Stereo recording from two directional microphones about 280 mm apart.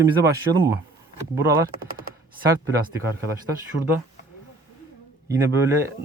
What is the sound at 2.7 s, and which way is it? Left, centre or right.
Speech, centre.